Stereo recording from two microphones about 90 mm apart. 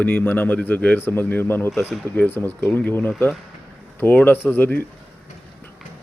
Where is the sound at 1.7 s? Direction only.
Centre (ahead or behind).